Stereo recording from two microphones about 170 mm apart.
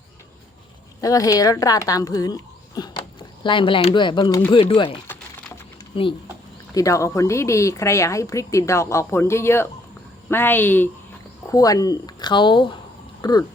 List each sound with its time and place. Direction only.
1.0 s speech: 20° left (ahead or behind)
6.7 s speech: 20° left (ahead or behind)